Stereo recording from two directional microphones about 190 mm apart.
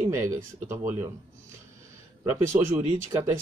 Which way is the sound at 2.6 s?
15° right (ahead or behind).